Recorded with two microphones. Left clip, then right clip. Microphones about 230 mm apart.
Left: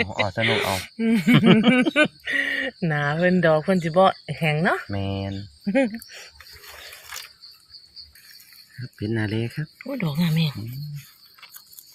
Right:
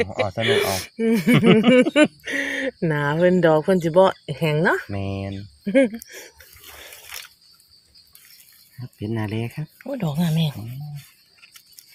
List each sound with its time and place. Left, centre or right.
0.4 s speech: right
4.9 s speech: centre
5.6 s speech: right
9.0 s speech: centre
9.7 s speech: right